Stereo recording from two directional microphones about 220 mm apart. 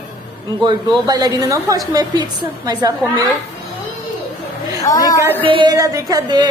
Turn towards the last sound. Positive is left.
turn(degrees=-15)  # may be behind; listen again after turning